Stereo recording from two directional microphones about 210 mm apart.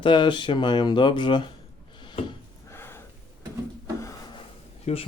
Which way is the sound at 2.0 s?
20° left (ahead or behind).